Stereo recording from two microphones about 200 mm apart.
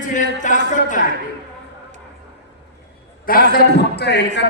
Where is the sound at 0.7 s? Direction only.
40° left (ahead or behind).